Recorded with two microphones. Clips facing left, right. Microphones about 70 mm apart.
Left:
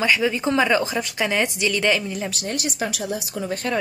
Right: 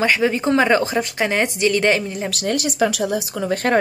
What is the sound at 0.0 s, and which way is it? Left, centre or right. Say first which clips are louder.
A woman's voice: right 3 dB; right.